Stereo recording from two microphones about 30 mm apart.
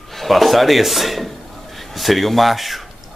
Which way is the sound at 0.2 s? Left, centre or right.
Centre.